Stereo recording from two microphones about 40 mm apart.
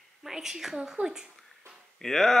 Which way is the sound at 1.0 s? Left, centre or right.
Right.